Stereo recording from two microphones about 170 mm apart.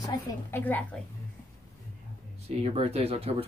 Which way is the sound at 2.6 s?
35° right (ahead or behind).